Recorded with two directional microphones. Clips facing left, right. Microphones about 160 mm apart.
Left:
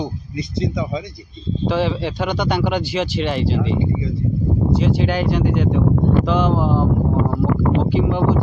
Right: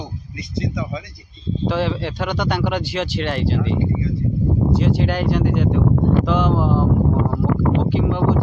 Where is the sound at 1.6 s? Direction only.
Centre (ahead or behind).